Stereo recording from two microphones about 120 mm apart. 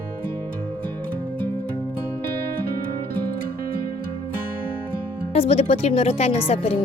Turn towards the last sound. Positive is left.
turn(degrees=60)  # may be behind; listen again after turning